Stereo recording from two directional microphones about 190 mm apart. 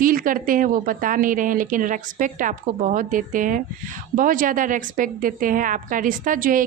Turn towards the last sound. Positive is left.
turn(degrees=-45)  # may be behind; listen again after turning